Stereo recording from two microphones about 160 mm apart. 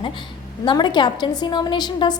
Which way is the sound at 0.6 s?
30° left (ahead or behind).